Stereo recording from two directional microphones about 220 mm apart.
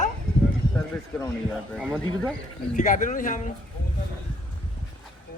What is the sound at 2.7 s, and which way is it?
Speech, 35° left (ahead or behind).